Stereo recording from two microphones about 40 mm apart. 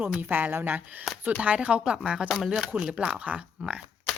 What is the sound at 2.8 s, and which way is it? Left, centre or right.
Speech, right.